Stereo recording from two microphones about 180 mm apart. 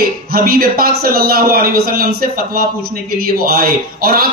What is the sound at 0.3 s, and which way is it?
Speech, 55° right (ahead or behind).